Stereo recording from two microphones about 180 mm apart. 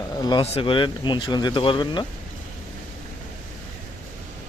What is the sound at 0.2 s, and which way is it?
Speech, 25° left (ahead or behind).